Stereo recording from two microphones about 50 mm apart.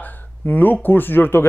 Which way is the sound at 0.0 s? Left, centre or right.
Left.